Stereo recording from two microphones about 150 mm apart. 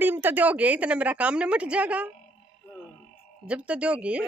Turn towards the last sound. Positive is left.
turn(degrees=-10)  # may be behind; listen again after turning